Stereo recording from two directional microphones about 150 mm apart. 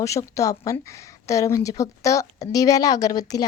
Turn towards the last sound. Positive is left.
turn(degrees=25)  # may be behind; listen again after turning